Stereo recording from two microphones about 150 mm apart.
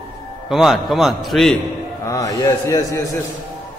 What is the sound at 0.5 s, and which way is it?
A man's voice, centre (ahead or behind).